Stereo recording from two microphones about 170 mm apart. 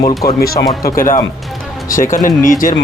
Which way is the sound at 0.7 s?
20° left (ahead or behind).